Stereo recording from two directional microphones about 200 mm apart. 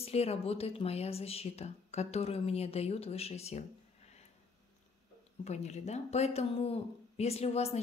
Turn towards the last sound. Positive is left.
turn(degrees=30)  # may be behind; listen again after turning